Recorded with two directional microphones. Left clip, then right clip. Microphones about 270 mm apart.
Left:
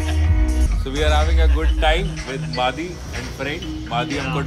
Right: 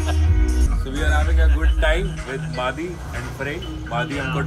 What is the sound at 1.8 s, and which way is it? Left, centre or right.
Speech, centre.